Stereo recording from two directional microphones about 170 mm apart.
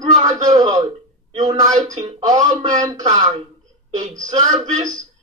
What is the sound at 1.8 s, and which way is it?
Speech, 45° right (ahead or behind).